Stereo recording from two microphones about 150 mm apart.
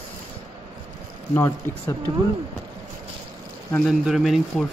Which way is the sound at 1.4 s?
15° left (ahead or behind).